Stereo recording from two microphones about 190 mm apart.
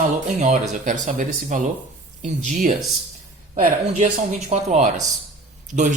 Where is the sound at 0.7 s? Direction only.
40° right (ahead or behind).